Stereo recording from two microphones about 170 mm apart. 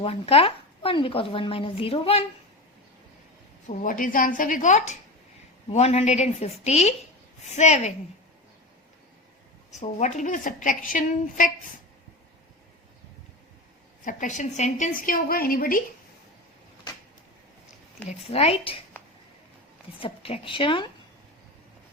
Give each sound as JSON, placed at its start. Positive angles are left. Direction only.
{"t": 0.0, "sound": "speech", "side_deg": 35}
{"t": 3.7, "sound": "a woman's voice", "side_deg": 50}
{"t": 9.8, "sound": "a woman's voice", "side_deg": 45}
{"t": 14.0, "sound": "a woman's voice", "side_deg": 50}
{"t": 18.1, "sound": "speech", "side_deg": 35}
{"t": 20.0, "sound": "speech", "side_deg": 30}